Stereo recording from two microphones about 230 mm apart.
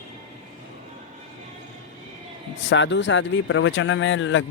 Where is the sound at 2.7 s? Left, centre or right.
Left.